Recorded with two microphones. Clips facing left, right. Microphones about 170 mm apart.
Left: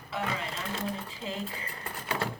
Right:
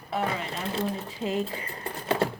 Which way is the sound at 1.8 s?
30° right (ahead or behind).